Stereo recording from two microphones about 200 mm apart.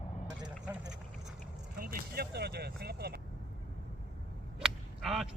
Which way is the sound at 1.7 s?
45° right (ahead or behind).